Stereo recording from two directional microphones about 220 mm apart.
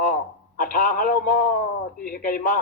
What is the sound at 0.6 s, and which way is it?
A man's voice, 40° left (ahead or behind).